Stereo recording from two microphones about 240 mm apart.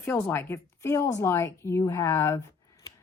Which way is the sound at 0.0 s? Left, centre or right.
Centre.